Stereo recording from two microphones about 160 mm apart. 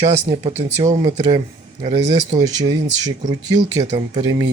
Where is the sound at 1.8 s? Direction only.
40° right (ahead or behind).